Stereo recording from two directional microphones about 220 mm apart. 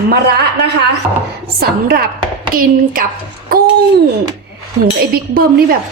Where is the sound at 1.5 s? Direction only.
45° right (ahead or behind).